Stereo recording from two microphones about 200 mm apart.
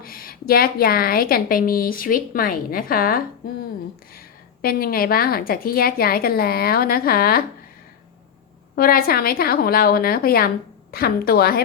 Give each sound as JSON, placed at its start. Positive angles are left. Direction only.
{"t": 0.0, "sound": "a woman's voice", "side_deg": 45}
{"t": 4.6, "sound": "a woman's voice", "side_deg": 50}
{"t": 8.7, "sound": "a woman's voice", "side_deg": 50}